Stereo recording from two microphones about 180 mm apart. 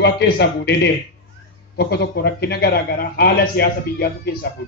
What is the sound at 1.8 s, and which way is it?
A man's voice, 65° left (ahead or behind).